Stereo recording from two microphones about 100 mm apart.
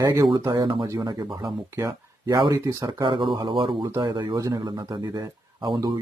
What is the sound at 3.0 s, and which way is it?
Speech, 50° right (ahead or behind).